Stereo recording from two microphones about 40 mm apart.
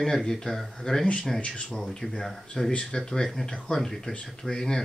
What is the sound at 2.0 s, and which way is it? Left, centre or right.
Speech, left.